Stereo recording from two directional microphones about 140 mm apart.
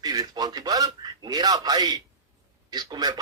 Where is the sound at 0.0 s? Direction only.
30° right (ahead or behind).